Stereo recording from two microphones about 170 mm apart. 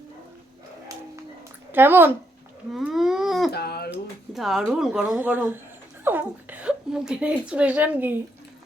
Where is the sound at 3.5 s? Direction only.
70° left (ahead or behind).